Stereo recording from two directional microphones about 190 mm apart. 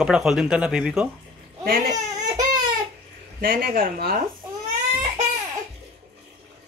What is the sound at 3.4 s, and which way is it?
Speech, 50° right (ahead or behind).